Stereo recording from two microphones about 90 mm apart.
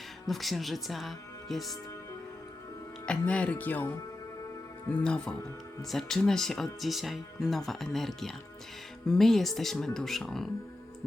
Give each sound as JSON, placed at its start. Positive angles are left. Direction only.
{"t": 0.3, "sound": "speech", "side_deg": 0}
{"t": 3.1, "sound": "speech", "side_deg": 15}
{"t": 4.9, "sound": "speech", "side_deg": 10}